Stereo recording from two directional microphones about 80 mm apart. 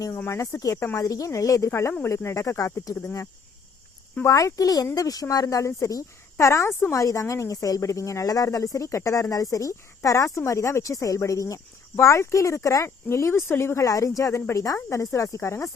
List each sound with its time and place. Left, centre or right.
0.3 s a woman's voice: left
4.3 s a woman's voice: left
6.9 s a woman's voice: left
13.8 s a woman's voice: left